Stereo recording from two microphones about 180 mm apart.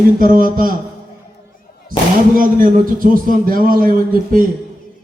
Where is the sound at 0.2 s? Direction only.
50° right (ahead or behind).